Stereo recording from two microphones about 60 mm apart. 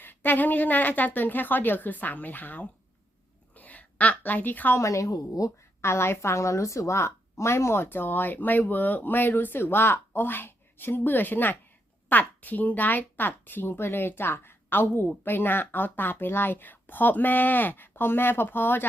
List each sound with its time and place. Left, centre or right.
0.0 s a woman's voice: left
3.5 s a sound: left
4.8 s a woman's voice: left
5.8 s a woman's voice: left